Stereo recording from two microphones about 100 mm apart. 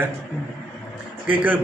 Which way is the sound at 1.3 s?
15° right (ahead or behind).